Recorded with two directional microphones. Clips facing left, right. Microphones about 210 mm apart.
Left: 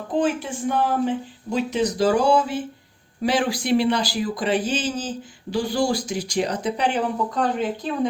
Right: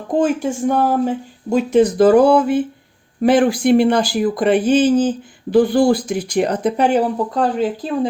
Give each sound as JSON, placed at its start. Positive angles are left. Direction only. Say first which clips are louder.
{"t": 0.2, "sound": "speech", "louder": "right 6 dB", "side_deg": -45}
{"t": 7.3, "sound": "speech", "louder": "right 6 dB", "side_deg": -35}